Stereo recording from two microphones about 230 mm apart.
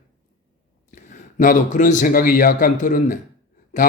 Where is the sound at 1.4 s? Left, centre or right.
Left.